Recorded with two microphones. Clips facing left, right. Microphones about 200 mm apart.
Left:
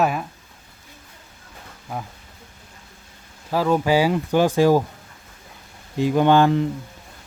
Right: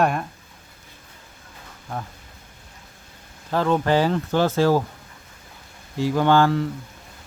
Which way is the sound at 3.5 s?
5° left (ahead or behind).